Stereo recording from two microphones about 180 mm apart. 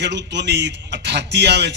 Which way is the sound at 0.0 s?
70° right (ahead or behind).